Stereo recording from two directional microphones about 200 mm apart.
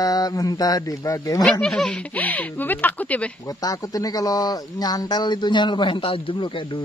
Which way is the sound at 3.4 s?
15° left (ahead or behind).